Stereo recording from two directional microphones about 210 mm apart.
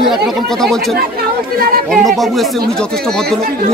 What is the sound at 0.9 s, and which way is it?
Speech, 45° right (ahead or behind).